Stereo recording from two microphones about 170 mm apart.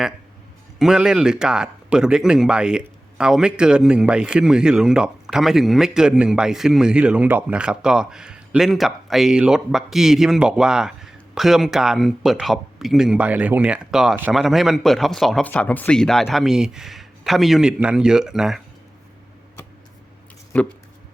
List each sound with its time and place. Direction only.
0.8 s speech: 5° right (ahead or behind)
20.5 s speech: 5° left (ahead or behind)